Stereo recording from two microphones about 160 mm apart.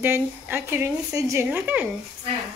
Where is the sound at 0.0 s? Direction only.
15° right (ahead or behind).